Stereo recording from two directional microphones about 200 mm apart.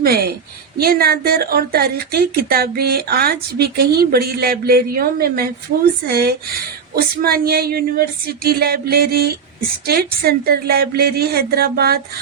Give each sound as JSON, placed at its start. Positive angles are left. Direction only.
{"t": 0.0, "sound": "a woman's voice", "side_deg": -50}